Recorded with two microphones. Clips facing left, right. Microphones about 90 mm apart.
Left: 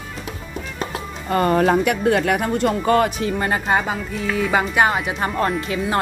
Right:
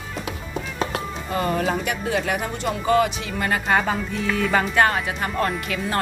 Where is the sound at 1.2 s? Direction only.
50° left (ahead or behind).